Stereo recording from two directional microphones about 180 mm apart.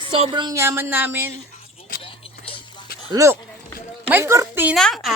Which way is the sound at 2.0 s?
30° left (ahead or behind).